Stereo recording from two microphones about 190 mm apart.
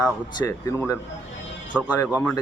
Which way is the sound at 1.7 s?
5° right (ahead or behind).